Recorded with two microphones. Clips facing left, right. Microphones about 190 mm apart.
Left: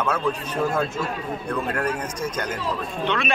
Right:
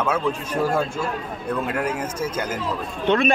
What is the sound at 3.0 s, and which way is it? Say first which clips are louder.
Speech: right 7 dB; 50° right (ahead or behind).